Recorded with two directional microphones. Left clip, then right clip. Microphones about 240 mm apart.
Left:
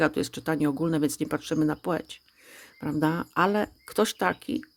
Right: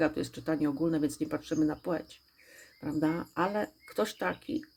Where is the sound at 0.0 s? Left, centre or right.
Left.